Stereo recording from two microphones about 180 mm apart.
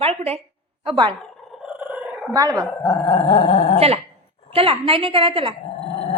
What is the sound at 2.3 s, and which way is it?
Speech, 20° right (ahead or behind).